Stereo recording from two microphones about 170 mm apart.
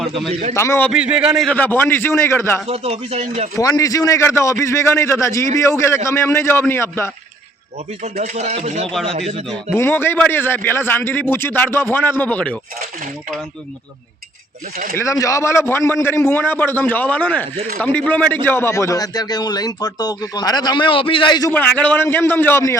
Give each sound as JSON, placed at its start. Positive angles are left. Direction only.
{"t": 0.0, "sound": "a man's voice", "side_deg": 0}
{"t": 0.5, "sound": "a man's voice", "side_deg": 15}
{"t": 0.9, "sound": "a man's voice", "side_deg": -5}
{"t": 1.5, "sound": "a man's voice", "side_deg": 10}
{"t": 2.6, "sound": "speech", "side_deg": -40}
{"t": 3.6, "sound": "a man's voice", "side_deg": 20}
{"t": 8.0, "sound": "speech", "side_deg": -45}
{"t": 9.7, "sound": "a man's voice", "side_deg": 15}
{"t": 14.9, "sound": "a man's voice", "side_deg": 15}
{"t": 21.5, "sound": "a man's voice", "side_deg": 10}